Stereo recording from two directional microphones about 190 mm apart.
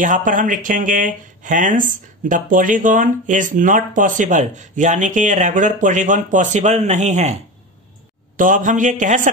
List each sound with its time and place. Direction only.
0.0 s speech: 45° right (ahead or behind)
8.4 s speech: 45° right (ahead or behind)